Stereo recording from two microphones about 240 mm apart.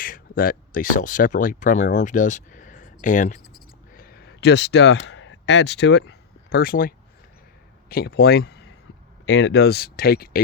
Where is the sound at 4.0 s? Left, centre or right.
Left.